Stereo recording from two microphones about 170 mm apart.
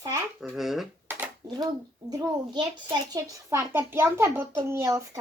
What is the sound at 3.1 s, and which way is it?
A child's voice, 20° right (ahead or behind).